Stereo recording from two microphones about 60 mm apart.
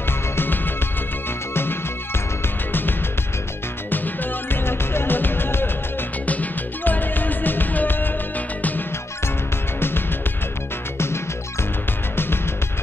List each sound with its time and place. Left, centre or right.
0.4 s music: left
6.2 s music: left
9.8 s music: left